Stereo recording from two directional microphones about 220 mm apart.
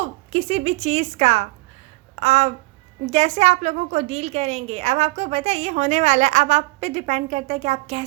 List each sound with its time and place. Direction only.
0.0 s a woman's voice: 25° right (ahead or behind)
2.1 s a sound: 25° right (ahead or behind)
3.1 s a woman's voice: 30° right (ahead or behind)